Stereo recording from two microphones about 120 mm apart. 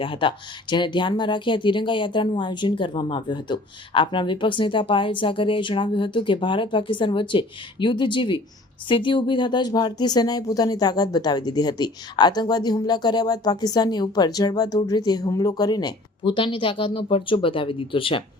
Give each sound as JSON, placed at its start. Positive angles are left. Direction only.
{"t": 0.0, "sound": "speech", "side_deg": 45}